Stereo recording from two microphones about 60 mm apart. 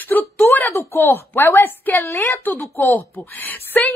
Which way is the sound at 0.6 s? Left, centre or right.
Left.